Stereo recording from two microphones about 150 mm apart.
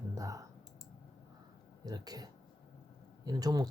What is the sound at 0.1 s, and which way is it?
Clicking, 20° right (ahead or behind).